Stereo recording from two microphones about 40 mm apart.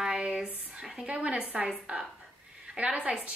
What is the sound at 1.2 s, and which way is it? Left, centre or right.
A woman's voice, right.